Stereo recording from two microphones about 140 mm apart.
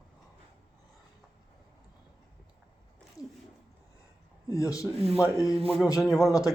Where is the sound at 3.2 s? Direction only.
25° left (ahead or behind).